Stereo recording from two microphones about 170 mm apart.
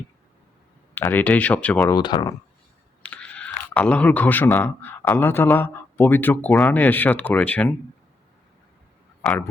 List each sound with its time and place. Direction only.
0.9 s speech: 10° left (ahead or behind)
1.9 s speech: 25° left (ahead or behind)
3.0 s crunch: 5° left (ahead or behind)
3.8 s speech: 5° left (ahead or behind)
9.2 s speech: 5° left (ahead or behind)